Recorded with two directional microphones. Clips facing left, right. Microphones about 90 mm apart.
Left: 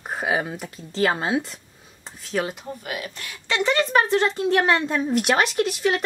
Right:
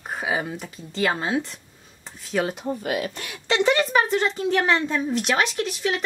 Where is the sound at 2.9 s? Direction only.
45° right (ahead or behind).